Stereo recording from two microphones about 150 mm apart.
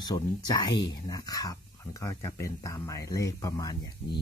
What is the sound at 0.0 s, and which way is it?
Speech, 25° left (ahead or behind).